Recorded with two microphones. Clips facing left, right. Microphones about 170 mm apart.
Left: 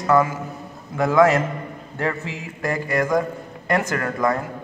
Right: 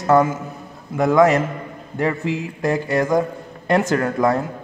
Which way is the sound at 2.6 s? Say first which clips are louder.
Right 3 dB; 25° right (ahead or behind).